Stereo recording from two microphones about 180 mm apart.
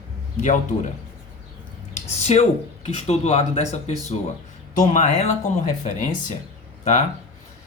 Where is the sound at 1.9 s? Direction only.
35° left (ahead or behind).